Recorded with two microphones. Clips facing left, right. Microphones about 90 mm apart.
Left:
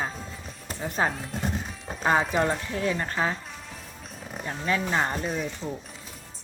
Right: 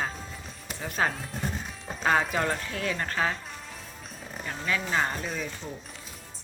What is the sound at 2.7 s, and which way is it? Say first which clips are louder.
Speech: left 3 dB; 20° left (ahead or behind).